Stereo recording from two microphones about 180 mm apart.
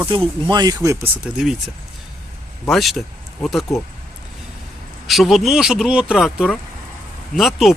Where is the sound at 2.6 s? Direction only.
Centre (ahead or behind).